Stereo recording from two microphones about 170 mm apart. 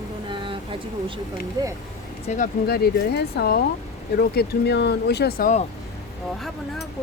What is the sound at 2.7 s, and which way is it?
Speech, 65° left (ahead or behind).